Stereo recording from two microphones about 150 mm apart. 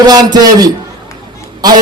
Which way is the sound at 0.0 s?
25° right (ahead or behind).